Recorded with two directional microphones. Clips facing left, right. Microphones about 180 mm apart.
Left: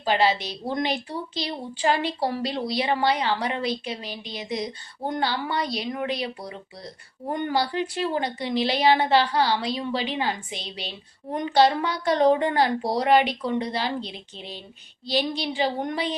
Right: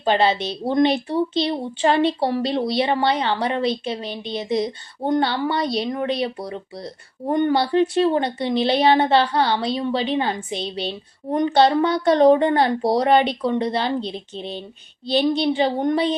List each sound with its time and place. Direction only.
0.0 s speech: 25° right (ahead or behind)